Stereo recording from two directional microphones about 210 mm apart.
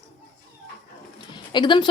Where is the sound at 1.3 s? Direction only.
20° left (ahead or behind).